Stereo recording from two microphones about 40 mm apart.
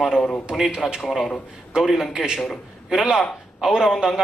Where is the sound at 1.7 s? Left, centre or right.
Centre.